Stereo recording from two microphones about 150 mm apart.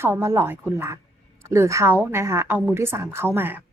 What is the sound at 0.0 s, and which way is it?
A woman's voice, 15° right (ahead or behind).